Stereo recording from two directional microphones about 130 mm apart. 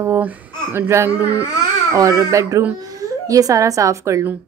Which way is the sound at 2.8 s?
25° right (ahead or behind).